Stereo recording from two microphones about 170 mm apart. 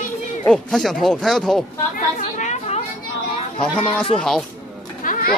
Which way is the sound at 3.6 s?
5° left (ahead or behind).